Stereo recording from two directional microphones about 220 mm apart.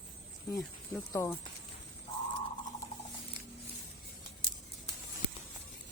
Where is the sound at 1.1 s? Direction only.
15° left (ahead or behind).